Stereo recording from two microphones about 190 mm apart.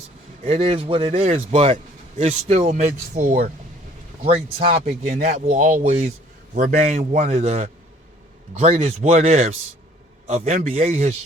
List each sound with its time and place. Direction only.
0.4 s a man's voice: 35° right (ahead or behind)
4.2 s a man's voice: 35° right (ahead or behind)